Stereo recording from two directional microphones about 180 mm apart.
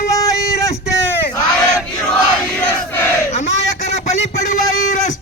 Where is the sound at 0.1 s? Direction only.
15° left (ahead or behind).